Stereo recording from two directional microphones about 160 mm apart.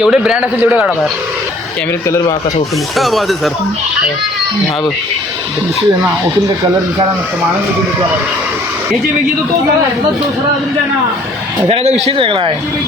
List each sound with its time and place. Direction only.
0.0 s a man's voice: 5° right (ahead or behind)
2.0 s speech: 20° left (ahead or behind)
2.9 s a man's voice: centre (ahead or behind)
11.7 s speech: 40° right (ahead or behind)